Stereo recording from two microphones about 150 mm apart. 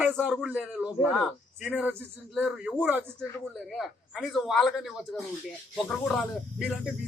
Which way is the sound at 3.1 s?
Centre (ahead or behind).